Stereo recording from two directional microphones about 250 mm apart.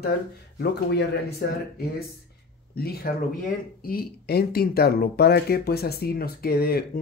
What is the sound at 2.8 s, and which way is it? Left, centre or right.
Speech, left.